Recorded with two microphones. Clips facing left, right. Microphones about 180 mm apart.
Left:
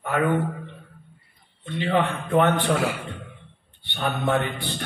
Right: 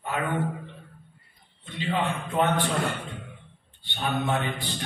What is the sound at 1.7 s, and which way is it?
A man's voice, 60° left (ahead or behind).